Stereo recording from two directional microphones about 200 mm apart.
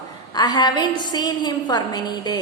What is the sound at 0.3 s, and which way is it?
A woman's voice, 20° left (ahead or behind).